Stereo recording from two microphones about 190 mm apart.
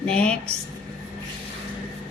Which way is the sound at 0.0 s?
5° left (ahead or behind).